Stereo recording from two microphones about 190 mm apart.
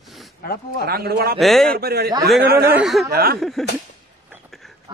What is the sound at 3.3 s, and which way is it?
Speech, centre (ahead or behind).